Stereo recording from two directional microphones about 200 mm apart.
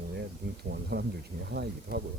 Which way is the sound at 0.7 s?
55° right (ahead or behind).